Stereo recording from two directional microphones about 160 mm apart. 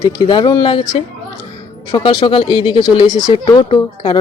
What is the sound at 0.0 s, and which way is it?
Speech, 30° left (ahead or behind).